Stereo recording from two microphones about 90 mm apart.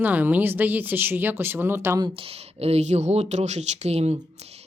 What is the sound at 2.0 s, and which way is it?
Speech, 85° right.